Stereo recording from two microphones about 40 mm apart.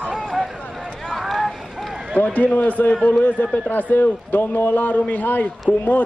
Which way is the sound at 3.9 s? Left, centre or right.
Left.